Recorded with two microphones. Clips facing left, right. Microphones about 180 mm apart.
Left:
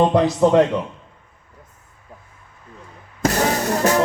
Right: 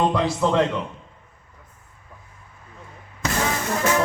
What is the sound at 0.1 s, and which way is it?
Speech, 45° left (ahead or behind).